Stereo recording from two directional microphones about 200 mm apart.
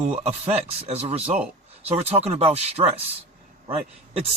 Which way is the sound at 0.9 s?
30° right (ahead or behind).